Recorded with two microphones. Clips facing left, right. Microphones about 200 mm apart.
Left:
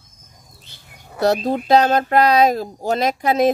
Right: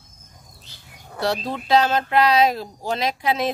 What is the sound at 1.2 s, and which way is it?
Speech, 45° left (ahead or behind).